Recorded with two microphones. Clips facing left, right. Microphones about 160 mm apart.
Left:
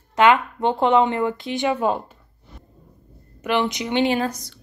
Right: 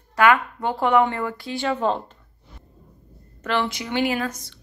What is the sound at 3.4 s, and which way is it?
Speech, 15° left (ahead or behind).